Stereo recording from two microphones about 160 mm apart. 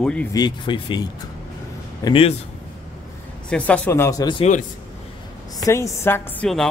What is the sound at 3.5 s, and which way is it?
Speech, 10° left (ahead or behind).